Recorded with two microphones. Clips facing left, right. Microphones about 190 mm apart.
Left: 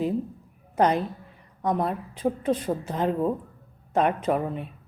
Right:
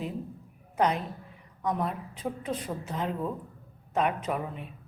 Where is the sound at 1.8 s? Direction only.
35° left (ahead or behind).